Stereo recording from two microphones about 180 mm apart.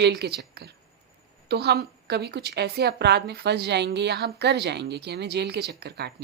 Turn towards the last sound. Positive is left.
turn(degrees=-65)  # may be behind; listen again after turning